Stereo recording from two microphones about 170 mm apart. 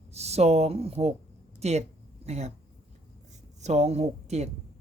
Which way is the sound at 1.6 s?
40° right (ahead or behind).